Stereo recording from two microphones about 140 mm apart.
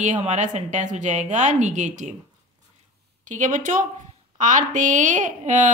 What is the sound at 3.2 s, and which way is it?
A woman's voice, 60° right (ahead or behind).